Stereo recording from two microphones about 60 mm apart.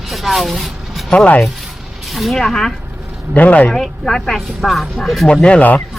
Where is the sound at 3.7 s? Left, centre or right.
Centre.